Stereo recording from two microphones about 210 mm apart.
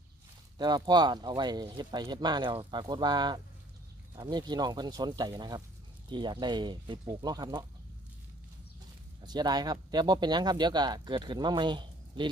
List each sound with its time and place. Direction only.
0.6 s speech: 20° right (ahead or behind)
9.2 s speech: 20° right (ahead or behind)